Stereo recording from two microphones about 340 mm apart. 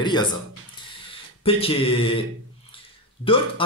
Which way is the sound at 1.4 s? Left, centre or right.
Centre.